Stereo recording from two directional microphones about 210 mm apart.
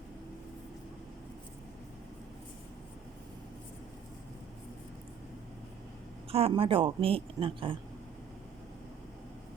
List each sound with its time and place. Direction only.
6.3 s speech: 25° right (ahead or behind)